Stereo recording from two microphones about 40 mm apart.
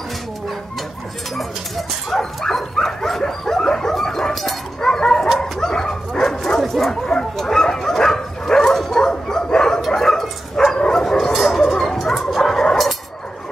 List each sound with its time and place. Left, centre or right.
2.1 s dog: centre
6.9 s a sound: centre
7.7 s dog: centre
11.3 s bow-wow: centre